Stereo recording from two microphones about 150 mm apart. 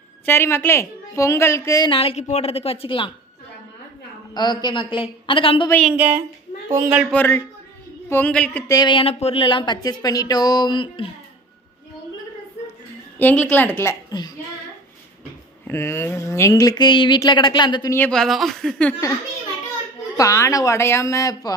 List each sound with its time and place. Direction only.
0.2 s a woman's voice: 15° left (ahead or behind)
1.9 s a woman's voice: 40° left (ahead or behind)
4.3 s a woman's voice: 30° left (ahead or behind)
5.9 s a woman's voice: 15° right (ahead or behind)
7.1 s a woman's voice: 15° left (ahead or behind)
8.6 s speech: 30° left (ahead or behind)
13.2 s a woman's voice: 10° left (ahead or behind)
14.2 s a woman's voice: 30° left (ahead or behind)
15.6 s speech: 15° left (ahead or behind)
17.9 s a woman's voice: 10° left (ahead or behind)
18.2 s a woman's voice: centre (ahead or behind)
20.2 s speech: 20° left (ahead or behind)